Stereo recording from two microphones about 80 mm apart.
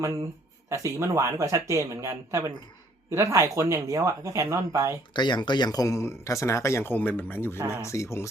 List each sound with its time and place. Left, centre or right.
0.7 s speech: right
5.1 s speech: left
6.9 s speech: left
7.8 s speech: left